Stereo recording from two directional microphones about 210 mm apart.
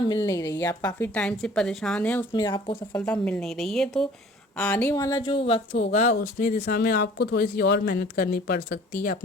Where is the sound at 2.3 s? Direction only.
20° left (ahead or behind).